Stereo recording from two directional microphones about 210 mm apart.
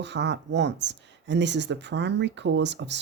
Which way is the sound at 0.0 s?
55° right (ahead or behind).